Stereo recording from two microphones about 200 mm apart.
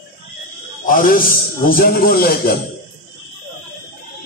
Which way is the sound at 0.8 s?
45° left (ahead or behind).